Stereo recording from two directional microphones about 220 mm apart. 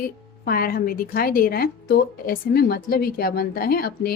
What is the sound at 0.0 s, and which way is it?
A woman's voice, 40° left (ahead or behind).